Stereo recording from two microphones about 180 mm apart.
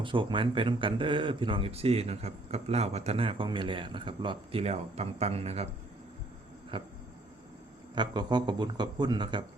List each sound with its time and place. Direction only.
0.0 s speech: 25° right (ahead or behind)
6.7 s speech: 25° right (ahead or behind)
7.9 s speech: 25° right (ahead or behind)